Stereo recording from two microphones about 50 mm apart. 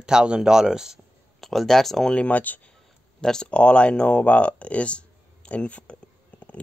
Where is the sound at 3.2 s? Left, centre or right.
Centre.